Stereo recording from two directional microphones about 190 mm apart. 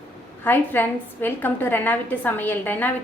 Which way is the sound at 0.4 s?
10° left (ahead or behind).